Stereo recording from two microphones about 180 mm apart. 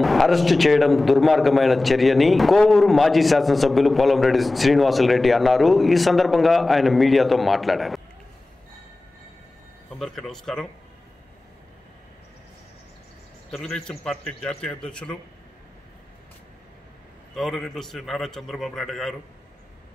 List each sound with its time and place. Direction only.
0.0 s a man's voice: centre (ahead or behind)
9.9 s a man's voice: centre (ahead or behind)
13.5 s a man's voice: 5° left (ahead or behind)
17.4 s a man's voice: centre (ahead or behind)